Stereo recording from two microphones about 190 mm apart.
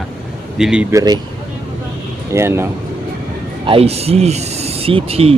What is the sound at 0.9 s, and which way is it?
Speech, 20° right (ahead or behind).